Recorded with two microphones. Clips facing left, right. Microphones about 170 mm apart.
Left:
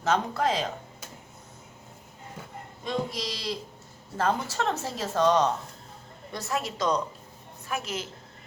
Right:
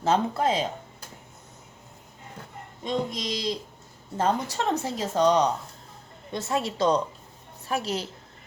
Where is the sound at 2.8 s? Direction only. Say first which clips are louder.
Right 2 dB; 20° right (ahead or behind).